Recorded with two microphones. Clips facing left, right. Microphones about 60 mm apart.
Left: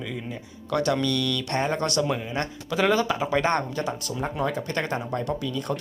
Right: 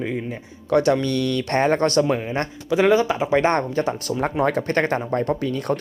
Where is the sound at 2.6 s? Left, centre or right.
Right.